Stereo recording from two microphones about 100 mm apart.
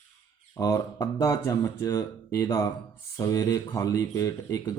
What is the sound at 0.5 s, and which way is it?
Speech, 35° left (ahead or behind).